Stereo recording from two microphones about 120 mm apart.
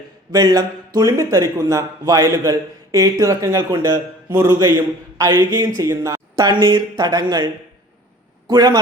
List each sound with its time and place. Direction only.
0.3 s speech: 30° right (ahead or behind)
6.3 s speech: 40° right (ahead or behind)